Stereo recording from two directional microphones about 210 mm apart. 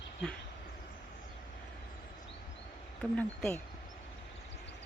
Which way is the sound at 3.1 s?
5° left (ahead or behind).